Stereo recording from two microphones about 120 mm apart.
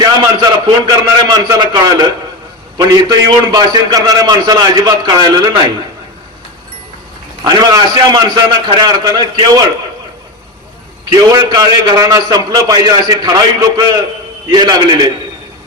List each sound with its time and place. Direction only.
0.0 s a man's voice: 35° right (ahead or behind)
7.4 s a man's voice: 35° right (ahead or behind)
11.1 s a man's voice: 35° right (ahead or behind)